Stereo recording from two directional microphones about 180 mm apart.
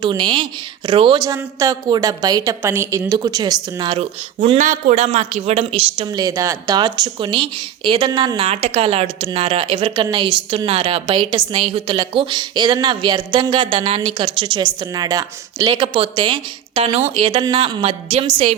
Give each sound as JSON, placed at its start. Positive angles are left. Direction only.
{"t": 0.0, "sound": "a woman's voice", "side_deg": -25}